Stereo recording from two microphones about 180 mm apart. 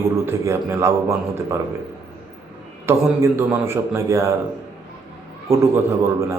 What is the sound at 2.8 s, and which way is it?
A man's voice, 15° right (ahead or behind).